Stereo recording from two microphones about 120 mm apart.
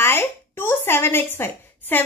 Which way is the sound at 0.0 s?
20° left (ahead or behind).